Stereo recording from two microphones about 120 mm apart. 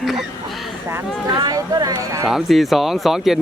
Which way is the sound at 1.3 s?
30° right (ahead or behind).